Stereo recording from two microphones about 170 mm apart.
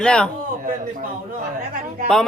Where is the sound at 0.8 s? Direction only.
50° right (ahead or behind).